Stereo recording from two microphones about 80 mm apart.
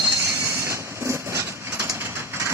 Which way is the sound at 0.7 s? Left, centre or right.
Right.